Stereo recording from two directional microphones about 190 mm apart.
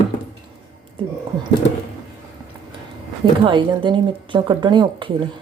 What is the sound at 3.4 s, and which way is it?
Speech, 25° right (ahead or behind).